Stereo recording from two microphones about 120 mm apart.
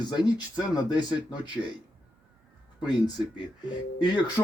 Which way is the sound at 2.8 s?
35° left (ahead or behind).